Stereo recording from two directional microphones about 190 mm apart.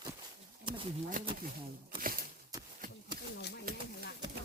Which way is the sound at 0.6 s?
30° right (ahead or behind).